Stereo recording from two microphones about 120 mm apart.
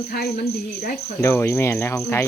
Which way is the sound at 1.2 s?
20° left (ahead or behind).